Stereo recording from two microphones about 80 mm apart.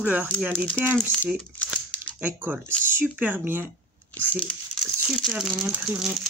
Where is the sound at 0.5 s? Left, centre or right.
Centre.